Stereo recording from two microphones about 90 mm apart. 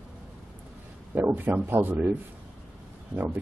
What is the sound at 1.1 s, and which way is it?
Speech, 20° right (ahead or behind).